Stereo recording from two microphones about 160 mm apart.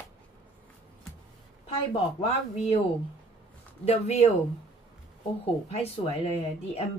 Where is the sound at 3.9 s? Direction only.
40° left (ahead or behind).